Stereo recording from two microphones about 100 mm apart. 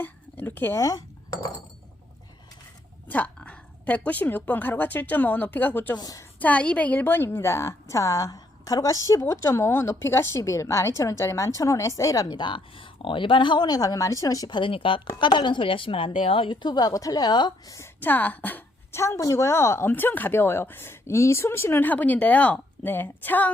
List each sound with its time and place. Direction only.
0.0 s speech: 20° left (ahead or behind); by 1.5 s 35° left (ahead or behind)
3.1 s a woman's voice: 15° left (ahead or behind)
6.0 s a woman's voice: 40° left (ahead or behind)
6.4 s a woman's voice: 15° left (ahead or behind); by 17.5 s 45° left (ahead or behind)
17.7 s a woman's voice: 25° left (ahead or behind)